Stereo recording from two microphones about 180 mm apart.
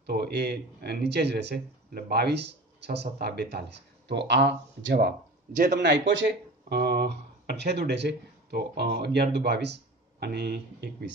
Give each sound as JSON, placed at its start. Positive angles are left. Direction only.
{"t": 0.0, "sound": "speech", "side_deg": -65}
{"t": 6.7, "sound": "speech", "side_deg": -60}